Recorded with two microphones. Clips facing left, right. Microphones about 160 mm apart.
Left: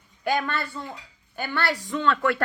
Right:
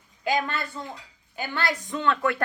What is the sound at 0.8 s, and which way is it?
A woman's voice, 20° right (ahead or behind).